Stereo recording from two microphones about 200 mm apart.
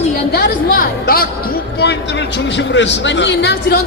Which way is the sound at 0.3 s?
55° left (ahead or behind).